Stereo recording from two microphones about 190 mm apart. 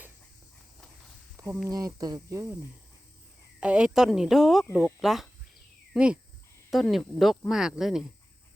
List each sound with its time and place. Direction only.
1.6 s speech: 20° right (ahead or behind)
3.6 s speech: 5° right (ahead or behind)